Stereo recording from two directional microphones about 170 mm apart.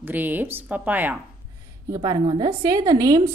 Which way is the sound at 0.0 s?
10° right (ahead or behind).